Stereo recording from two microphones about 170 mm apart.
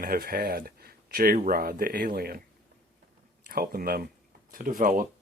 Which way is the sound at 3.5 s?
60° right (ahead or behind).